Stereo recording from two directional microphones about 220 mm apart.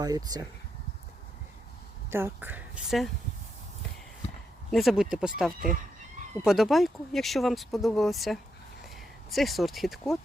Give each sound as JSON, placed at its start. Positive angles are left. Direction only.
{"t": 0.0, "sound": "speech", "side_deg": -15}
{"t": 2.0, "sound": "speech", "side_deg": -10}
{"t": 4.7, "sound": "speech", "side_deg": 0}